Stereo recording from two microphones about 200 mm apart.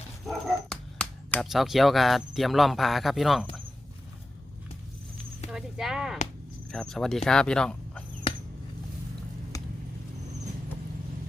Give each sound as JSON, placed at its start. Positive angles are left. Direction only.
{"t": 0.3, "sound": "speech", "side_deg": 5}
{"t": 5.5, "sound": "speech", "side_deg": -5}
{"t": 8.3, "sound": "chop", "side_deg": 25}